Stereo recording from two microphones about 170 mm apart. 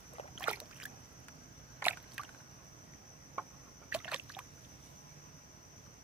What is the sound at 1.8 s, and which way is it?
Rowboat, 10° right (ahead or behind).